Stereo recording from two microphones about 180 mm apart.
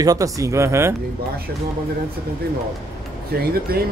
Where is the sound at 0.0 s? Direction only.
20° right (ahead or behind).